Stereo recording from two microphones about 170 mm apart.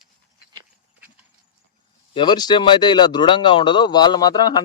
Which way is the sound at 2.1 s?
25° left (ahead or behind).